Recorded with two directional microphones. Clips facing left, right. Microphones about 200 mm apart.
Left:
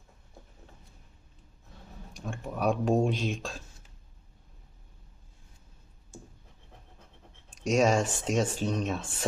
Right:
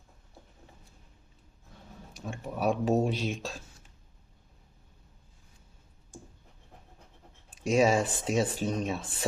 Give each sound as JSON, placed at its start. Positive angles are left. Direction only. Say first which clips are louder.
{"t": 2.1, "sound": "speech", "louder": "even", "side_deg": -5}
{"t": 7.5, "sound": "speech", "louder": "even", "side_deg": -5}